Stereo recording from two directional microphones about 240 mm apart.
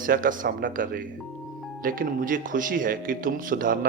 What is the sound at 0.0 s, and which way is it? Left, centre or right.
A man's voice, right.